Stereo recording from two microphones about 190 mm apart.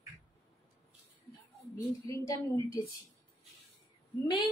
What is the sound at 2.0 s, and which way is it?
Speech, 15° left (ahead or behind).